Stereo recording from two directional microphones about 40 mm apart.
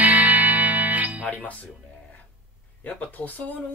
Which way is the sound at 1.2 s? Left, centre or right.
Left.